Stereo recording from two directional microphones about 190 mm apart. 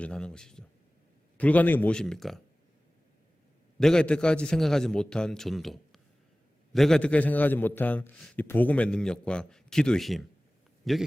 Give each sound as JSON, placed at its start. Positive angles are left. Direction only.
{"t": 0.0, "sound": "a man's voice", "side_deg": 5}
{"t": 3.8, "sound": "a man's voice", "side_deg": 5}